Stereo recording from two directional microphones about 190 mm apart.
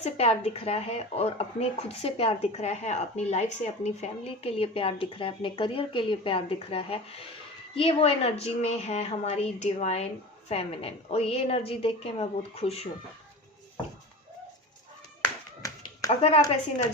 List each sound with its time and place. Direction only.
0.0 s speech: 35° left (ahead or behind)
16.0 s speech: 30° left (ahead or behind)